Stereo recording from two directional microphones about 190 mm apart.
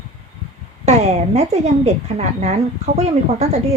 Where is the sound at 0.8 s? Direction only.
35° right (ahead or behind).